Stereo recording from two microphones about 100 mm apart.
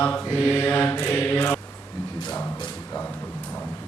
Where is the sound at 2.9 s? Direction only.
20° left (ahead or behind).